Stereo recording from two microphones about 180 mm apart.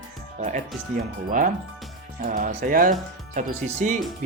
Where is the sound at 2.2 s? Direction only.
55° right (ahead or behind).